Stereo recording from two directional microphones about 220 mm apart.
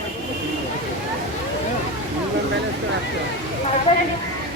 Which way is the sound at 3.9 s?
30° left (ahead or behind).